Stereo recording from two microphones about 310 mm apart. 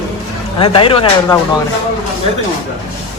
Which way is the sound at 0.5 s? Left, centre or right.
Centre.